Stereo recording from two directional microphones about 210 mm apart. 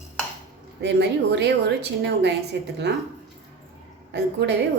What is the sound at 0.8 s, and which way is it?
A woman's voice, 55° right (ahead or behind).